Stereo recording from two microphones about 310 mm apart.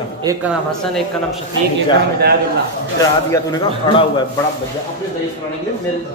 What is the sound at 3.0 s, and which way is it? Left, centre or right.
A man's voice, centre.